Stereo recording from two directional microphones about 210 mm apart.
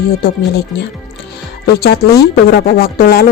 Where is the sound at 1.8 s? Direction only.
50° left (ahead or behind).